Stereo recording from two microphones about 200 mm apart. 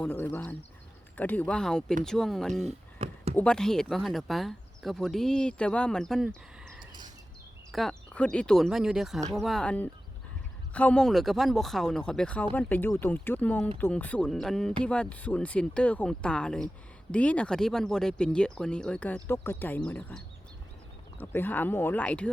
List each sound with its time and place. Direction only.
0.0 s speech: 10° left (ahead or behind)
2.6 s a sound: 30° right (ahead or behind)
3.3 s speech: 5° left (ahead or behind)